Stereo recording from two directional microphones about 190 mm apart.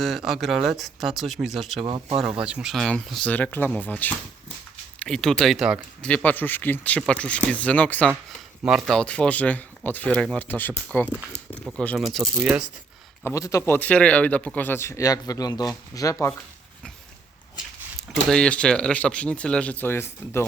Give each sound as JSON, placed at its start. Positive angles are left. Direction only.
{"t": 0.0, "sound": "speech", "side_deg": 0}
{"t": 1.8, "sound": "speech", "side_deg": -30}
{"t": 2.2, "sound": "speech", "side_deg": -5}
{"t": 6.0, "sound": "speech", "side_deg": 5}
{"t": 13.2, "sound": "speech", "side_deg": 15}
{"t": 18.3, "sound": "speech", "side_deg": 5}